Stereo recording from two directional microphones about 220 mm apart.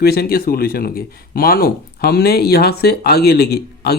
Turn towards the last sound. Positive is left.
turn(degrees=45)  # may be behind; listen again after turning